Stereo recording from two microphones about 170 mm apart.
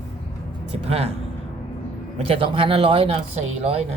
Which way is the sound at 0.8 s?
35° right (ahead or behind).